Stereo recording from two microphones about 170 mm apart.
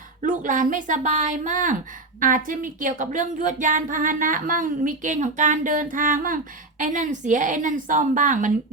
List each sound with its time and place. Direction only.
0.2 s a woman's voice: 50° right (ahead or behind)